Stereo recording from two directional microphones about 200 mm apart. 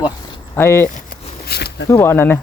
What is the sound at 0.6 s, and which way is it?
Speech, 10° left (ahead or behind).